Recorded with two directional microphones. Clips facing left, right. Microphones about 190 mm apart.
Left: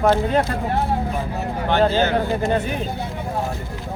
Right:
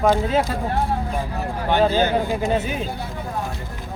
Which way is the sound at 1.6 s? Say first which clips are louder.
Even; 10° right (ahead or behind).